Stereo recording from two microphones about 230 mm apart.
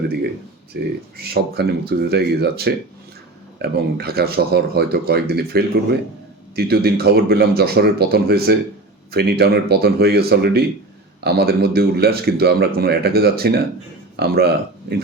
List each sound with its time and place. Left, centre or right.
0.7 s speech: right